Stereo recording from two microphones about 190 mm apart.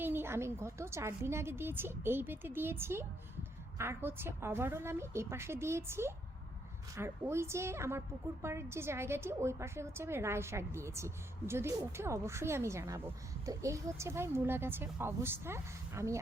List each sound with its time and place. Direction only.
0.0 s a woman's voice: 10° right (ahead or behind)